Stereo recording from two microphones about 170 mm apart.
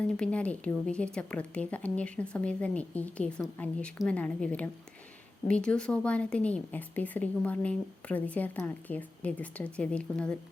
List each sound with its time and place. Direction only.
0.0 s a woman's voice: 5° left (ahead or behind)